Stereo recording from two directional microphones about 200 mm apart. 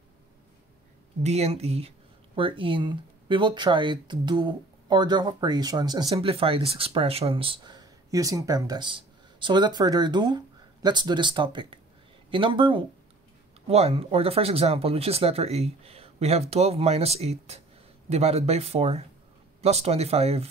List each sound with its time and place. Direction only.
1.2 s speech: 30° right (ahead or behind)